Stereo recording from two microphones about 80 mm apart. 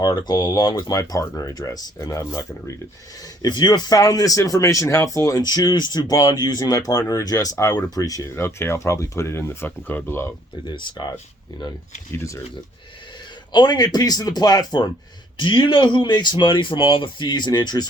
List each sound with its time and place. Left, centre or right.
0.0 s speech: left
2.0 s speech: left
3.4 s speech: left
7.9 s speech: left
8.4 s speech: left
10.7 s speech: left
12.1 s speech: left
13.5 s speech: left
15.4 s speech: left